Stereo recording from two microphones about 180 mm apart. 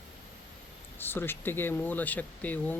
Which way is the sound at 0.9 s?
10° left (ahead or behind).